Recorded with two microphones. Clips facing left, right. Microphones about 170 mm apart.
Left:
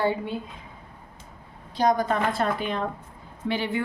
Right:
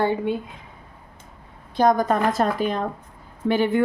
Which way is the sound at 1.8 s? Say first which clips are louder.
Right 4 dB; 50° right (ahead or behind).